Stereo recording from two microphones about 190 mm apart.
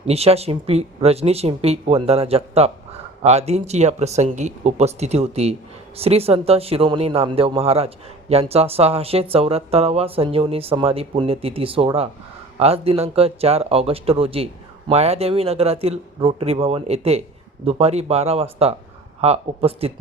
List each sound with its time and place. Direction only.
0.1 s speech: 30° right (ahead or behind)